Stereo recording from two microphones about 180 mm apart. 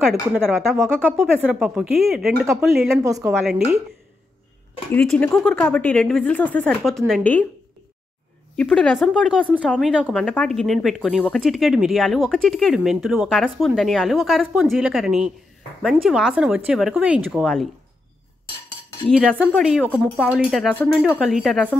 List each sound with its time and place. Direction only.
0.1 s speech: centre (ahead or behind)
1.1 s speech: 10° right (ahead or behind)
3.0 s a woman's voice: 15° right (ahead or behind)
4.9 s speech: 5° left (ahead or behind)
8.5 s speech: 5° left (ahead or behind)
19.0 s speech: 5° left (ahead or behind)
20.3 s speech: 5° right (ahead or behind)